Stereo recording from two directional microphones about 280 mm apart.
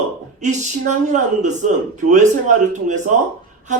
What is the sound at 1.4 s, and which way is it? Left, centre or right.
A man's voice, right.